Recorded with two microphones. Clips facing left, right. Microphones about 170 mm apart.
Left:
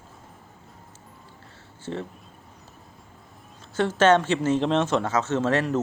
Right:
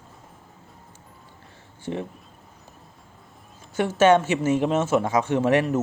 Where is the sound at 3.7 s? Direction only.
10° right (ahead or behind).